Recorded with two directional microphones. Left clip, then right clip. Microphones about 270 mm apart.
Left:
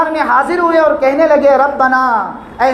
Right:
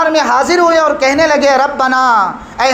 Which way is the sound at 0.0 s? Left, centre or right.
Right.